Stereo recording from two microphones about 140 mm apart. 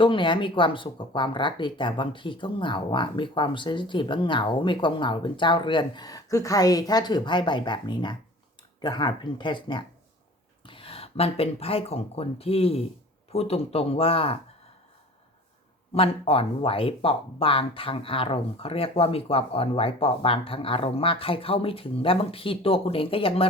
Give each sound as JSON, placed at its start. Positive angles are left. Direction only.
{"t": 0.0, "sound": "speech", "side_deg": 35}
{"t": 16.0, "sound": "speech", "side_deg": 45}